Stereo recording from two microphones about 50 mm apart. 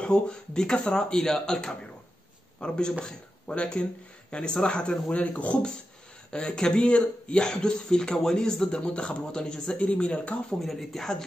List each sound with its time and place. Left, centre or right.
0.0 s a man's voice: centre
6.3 s speech: centre
10.6 s speech: centre